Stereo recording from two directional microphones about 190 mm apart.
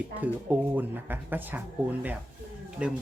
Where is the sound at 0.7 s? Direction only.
10° right (ahead or behind).